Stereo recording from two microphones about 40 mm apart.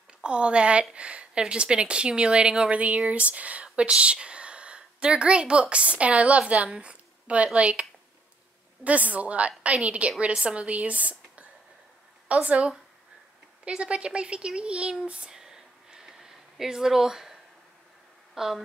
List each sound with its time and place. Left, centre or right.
0.2 s a woman's voice: right
2.7 s a woman's voice: right
8.8 s a woman's voice: right
12.4 s a woman's voice: right
15.3 s a sound: centre
18.3 s speech: centre